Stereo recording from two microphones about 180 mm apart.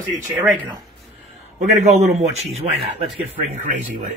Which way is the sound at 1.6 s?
40° right (ahead or behind).